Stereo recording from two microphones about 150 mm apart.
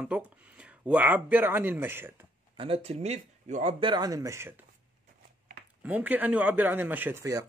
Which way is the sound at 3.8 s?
25° right (ahead or behind).